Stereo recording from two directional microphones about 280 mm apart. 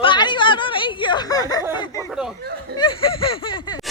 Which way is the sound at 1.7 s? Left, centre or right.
Centre.